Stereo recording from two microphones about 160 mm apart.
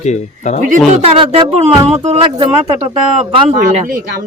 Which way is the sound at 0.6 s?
50° right (ahead or behind).